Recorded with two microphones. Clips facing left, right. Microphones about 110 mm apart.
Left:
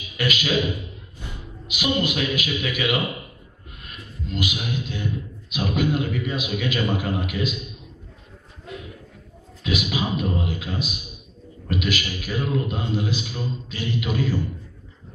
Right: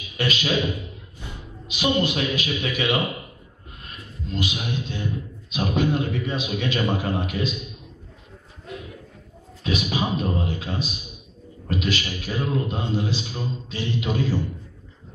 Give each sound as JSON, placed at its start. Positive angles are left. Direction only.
{"t": 0.2, "sound": "a man's voice", "side_deg": -30}
{"t": 1.7, "sound": "a man's voice", "side_deg": -30}
{"t": 9.6, "sound": "a man's voice", "side_deg": -35}